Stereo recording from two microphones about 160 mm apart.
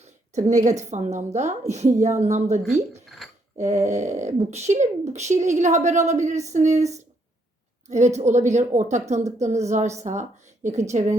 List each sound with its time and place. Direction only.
0.3 s a woman's voice: 45° right (ahead or behind)
3.2 s a sound: centre (ahead or behind)
3.6 s a woman's voice: 45° right (ahead or behind)
7.9 s a woman's voice: 45° right (ahead or behind)